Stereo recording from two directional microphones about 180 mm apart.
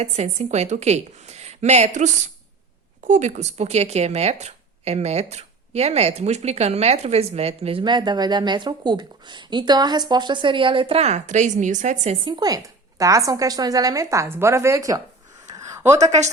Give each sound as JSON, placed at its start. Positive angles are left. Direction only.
{"t": 0.0, "sound": "speech", "side_deg": -35}
{"t": 12.2, "sound": "a woman's voice", "side_deg": -25}
{"t": 15.5, "sound": "a sound", "side_deg": -15}